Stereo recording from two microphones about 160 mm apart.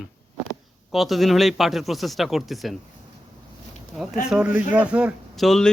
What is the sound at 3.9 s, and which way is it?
Speech, 5° right (ahead or behind).